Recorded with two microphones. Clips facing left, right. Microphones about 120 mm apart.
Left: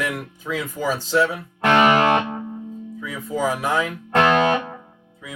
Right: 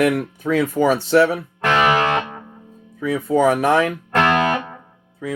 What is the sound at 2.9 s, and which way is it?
Speech, 70° right (ahead or behind).